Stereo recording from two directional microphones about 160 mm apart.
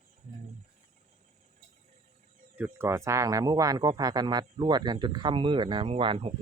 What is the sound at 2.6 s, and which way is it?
Speech, 10° right (ahead or behind).